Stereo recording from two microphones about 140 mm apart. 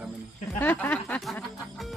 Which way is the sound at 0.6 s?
15° left (ahead or behind).